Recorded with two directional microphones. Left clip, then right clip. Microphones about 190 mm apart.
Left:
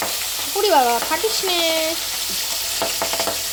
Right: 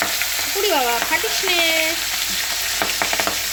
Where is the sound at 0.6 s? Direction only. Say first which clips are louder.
Left 4 dB; 15° left (ahead or behind).